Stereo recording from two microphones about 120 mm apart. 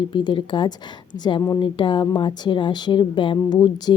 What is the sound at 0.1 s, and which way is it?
A woman's voice, 40° left (ahead or behind).